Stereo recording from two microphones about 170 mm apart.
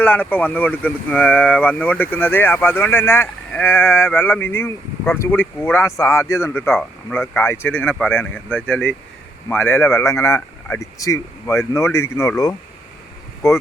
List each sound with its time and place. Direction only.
0.0 s speech: 10° left (ahead or behind)